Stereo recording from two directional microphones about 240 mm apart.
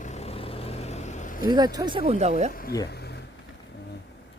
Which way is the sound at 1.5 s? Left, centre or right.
Centre.